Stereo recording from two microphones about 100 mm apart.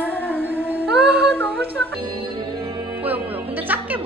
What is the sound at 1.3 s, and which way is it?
Humming, 10° left (ahead or behind).